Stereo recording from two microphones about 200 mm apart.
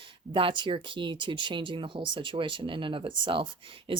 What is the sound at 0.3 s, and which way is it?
Speech, 25° right (ahead or behind).